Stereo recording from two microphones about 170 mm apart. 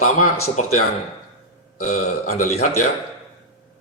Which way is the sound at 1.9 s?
40° left (ahead or behind).